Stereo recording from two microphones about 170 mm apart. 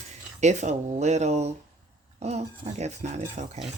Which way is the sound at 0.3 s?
45° right (ahead or behind).